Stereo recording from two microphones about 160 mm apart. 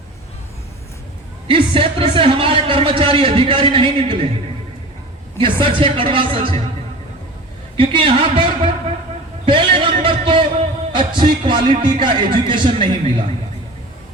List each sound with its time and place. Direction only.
1.5 s a man's voice: 35° right (ahead or behind)
5.4 s a man's voice: 35° right (ahead or behind)
7.8 s a man's voice: 35° right (ahead or behind)
9.5 s a sound: 30° right (ahead or behind)
10.9 s a man's voice: 30° right (ahead or behind)